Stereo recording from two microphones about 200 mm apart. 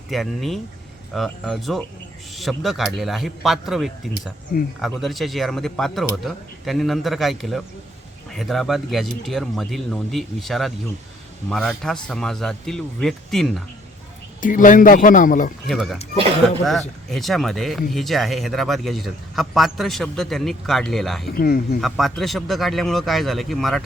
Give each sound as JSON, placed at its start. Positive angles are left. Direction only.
{"t": 0.1, "sound": "speech", "side_deg": 0}
{"t": 14.4, "sound": "a man's voice", "side_deg": 40}
{"t": 15.6, "sound": "speech", "side_deg": 0}
{"t": 17.1, "sound": "speech", "side_deg": 0}
{"t": 21.3, "sound": "a man's voice", "side_deg": 50}
{"t": 21.8, "sound": "speech", "side_deg": 0}